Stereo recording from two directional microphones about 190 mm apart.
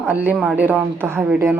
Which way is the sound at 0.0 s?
10° right (ahead or behind).